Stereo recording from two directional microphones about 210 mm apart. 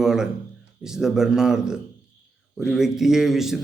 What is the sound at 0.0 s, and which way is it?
A man's voice, 5° right (ahead or behind).